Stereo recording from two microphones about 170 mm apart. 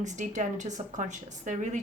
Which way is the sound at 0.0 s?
45° right (ahead or behind).